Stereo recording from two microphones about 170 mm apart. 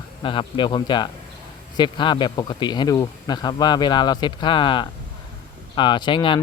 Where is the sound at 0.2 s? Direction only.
30° left (ahead or behind).